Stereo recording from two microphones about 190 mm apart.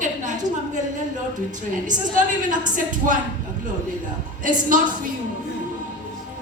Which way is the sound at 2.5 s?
45° right (ahead or behind).